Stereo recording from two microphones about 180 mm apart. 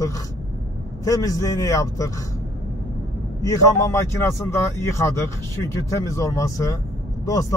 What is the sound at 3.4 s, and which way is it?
Speech, 20° left (ahead or behind).